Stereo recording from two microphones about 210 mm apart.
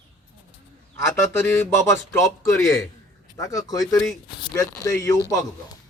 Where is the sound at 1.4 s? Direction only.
10° left (ahead or behind).